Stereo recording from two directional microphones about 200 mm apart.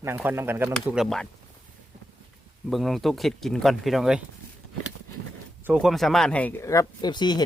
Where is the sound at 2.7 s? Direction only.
Centre (ahead or behind).